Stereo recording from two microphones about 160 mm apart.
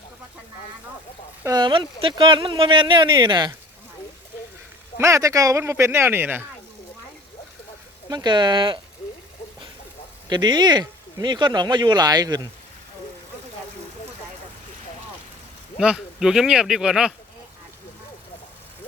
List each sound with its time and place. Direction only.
1.5 s speech: 25° right (ahead or behind)
4.9 s speech: 20° right (ahead or behind)
8.1 s speech: 30° right (ahead or behind)
10.2 s speech: 25° right (ahead or behind)
15.8 s speech: 5° right (ahead or behind)